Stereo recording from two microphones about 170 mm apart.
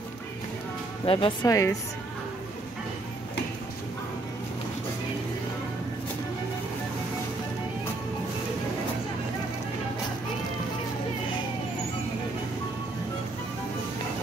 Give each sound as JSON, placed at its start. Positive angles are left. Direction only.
{"t": 1.0, "sound": "speech", "side_deg": 30}